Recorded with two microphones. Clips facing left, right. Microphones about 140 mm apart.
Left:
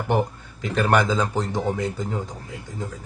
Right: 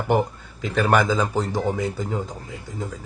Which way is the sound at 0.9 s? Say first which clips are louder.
Right 1 dB; 5° right (ahead or behind).